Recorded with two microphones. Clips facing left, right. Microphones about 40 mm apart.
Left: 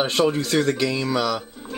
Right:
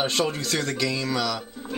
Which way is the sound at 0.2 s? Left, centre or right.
Centre.